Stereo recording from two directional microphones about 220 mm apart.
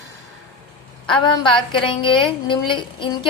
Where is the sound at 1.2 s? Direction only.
20° left (ahead or behind).